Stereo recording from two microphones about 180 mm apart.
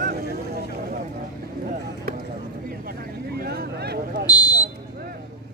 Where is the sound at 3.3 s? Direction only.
60° right (ahead or behind).